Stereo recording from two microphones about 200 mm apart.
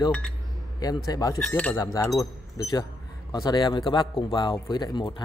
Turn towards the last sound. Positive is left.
turn(degrees=25)  # may be behind; listen again after turning